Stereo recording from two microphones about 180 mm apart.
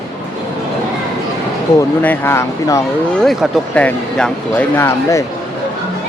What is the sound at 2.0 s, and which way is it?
Speech, 10° left (ahead or behind).